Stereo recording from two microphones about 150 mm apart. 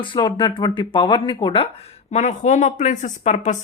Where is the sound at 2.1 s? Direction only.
50° left (ahead or behind).